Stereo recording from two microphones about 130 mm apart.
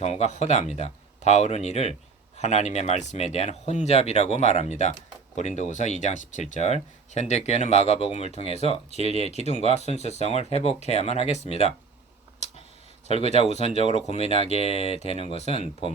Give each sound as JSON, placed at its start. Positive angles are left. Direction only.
{"t": 0.0, "sound": "speech", "side_deg": 60}
{"t": 13.1, "sound": "speech", "side_deg": 55}